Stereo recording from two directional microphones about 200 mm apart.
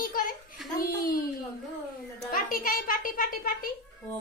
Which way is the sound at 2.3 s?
45° left (ahead or behind).